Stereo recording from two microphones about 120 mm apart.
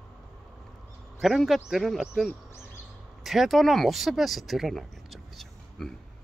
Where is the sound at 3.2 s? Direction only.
Centre (ahead or behind).